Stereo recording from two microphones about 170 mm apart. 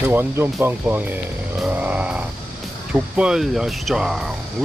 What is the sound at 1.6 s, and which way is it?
Vehicle, 10° right (ahead or behind).